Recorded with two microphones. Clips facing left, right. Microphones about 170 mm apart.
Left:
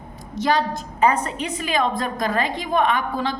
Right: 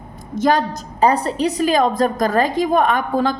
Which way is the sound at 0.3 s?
45° right (ahead or behind).